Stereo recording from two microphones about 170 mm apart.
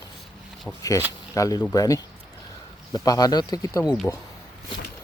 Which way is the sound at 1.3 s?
20° left (ahead or behind).